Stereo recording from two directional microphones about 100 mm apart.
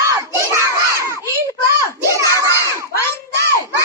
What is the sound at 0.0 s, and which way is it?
Crowd, 30° right (ahead or behind).